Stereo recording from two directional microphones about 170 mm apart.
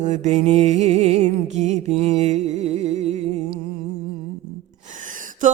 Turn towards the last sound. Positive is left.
turn(degrees=-50)  # may be behind; listen again after turning